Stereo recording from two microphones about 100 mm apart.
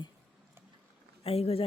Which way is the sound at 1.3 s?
80° left.